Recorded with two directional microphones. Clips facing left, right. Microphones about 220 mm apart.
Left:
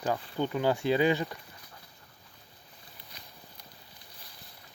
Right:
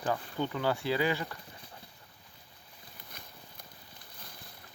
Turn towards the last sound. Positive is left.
turn(degrees=-50)  # may be behind; listen again after turning